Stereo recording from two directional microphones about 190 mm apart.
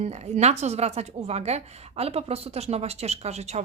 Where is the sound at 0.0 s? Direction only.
35° right (ahead or behind).